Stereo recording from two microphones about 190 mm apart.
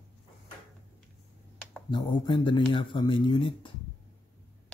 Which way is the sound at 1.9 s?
25° left (ahead or behind).